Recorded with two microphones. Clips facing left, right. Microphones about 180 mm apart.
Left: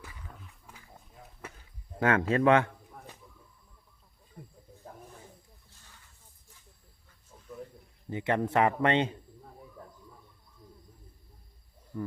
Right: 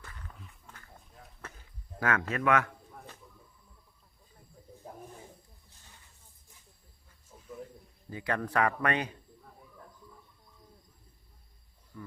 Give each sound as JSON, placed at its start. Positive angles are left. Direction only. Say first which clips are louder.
{"t": 0.7, "sound": "a sound", "louder": "left 1 dB", "side_deg": 10}
{"t": 2.0, "sound": "a man's voice", "louder": "left 6 dB", "side_deg": 30}
{"t": 8.1, "sound": "speech", "louder": "left 4 dB", "side_deg": 25}
{"t": 11.9, "sound": "wild animals", "louder": "left 10 dB", "side_deg": 40}